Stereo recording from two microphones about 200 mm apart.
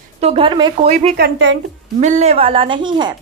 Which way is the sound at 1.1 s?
60° right (ahead or behind).